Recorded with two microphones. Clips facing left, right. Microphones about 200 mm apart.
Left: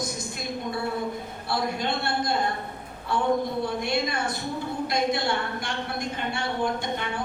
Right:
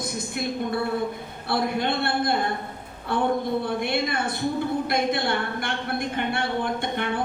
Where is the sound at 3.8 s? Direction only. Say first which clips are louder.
Right 1 dB; 55° right (ahead or behind).